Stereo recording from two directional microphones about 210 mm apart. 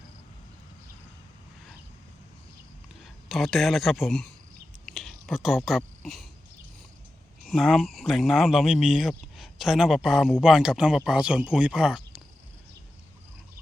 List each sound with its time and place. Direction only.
3.0 s a man's voice: centre (ahead or behind)
4.9 s a sound: centre (ahead or behind)
7.4 s speech: centre (ahead or behind)